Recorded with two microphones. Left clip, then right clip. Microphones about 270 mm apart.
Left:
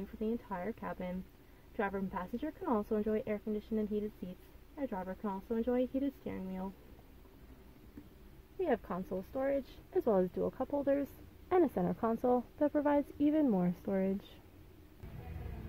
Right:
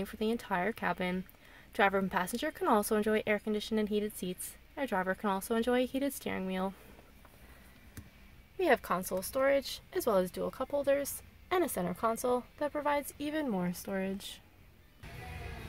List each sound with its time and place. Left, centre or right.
0.0 s speech: right
8.5 s speech: centre
9.5 s speech: centre
10.9 s a woman's voice: centre